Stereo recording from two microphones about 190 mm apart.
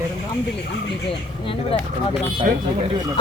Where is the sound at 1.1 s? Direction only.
30° left (ahead or behind).